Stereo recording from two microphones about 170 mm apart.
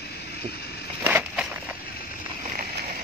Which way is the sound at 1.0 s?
10° right (ahead or behind).